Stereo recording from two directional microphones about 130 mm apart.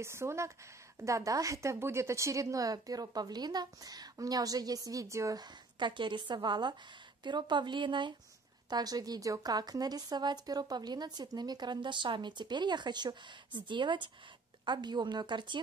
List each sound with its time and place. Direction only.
0.0 s a woman's voice: 20° right (ahead or behind); by 15.6 s 35° right (ahead or behind)